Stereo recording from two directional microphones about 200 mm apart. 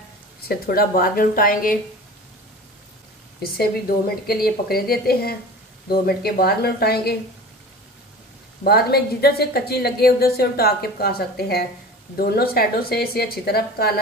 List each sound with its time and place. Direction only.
0.5 s a woman's voice: 50° left (ahead or behind)
3.5 s a woman's voice: 50° left (ahead or behind)
8.6 s a woman's voice: 50° left (ahead or behind)